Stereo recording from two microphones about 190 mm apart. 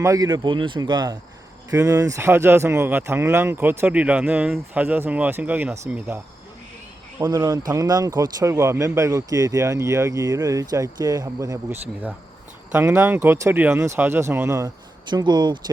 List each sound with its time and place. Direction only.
0.0 s speech: 20° right (ahead or behind)
7.2 s speech: 15° right (ahead or behind)